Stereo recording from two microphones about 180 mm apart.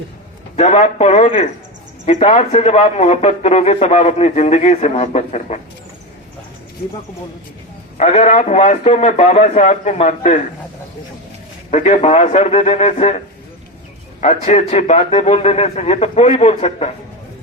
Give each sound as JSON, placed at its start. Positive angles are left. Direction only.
{"t": 0.5, "sound": "a man's voice", "side_deg": 35}
{"t": 7.9, "sound": "a man's voice", "side_deg": 40}
{"t": 11.7, "sound": "a man's voice", "side_deg": 40}
{"t": 14.2, "sound": "a man's voice", "side_deg": 40}